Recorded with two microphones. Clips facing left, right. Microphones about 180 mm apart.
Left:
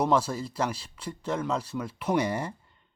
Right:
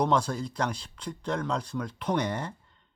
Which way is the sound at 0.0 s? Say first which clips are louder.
Left 1 dB; 5° left (ahead or behind).